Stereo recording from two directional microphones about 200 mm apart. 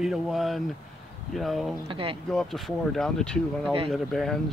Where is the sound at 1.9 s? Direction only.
25° right (ahead or behind).